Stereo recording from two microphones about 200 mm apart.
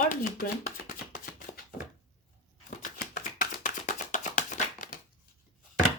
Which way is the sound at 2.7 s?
40° left (ahead or behind).